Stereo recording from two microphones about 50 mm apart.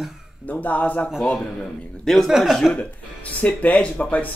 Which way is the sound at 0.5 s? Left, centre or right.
Left.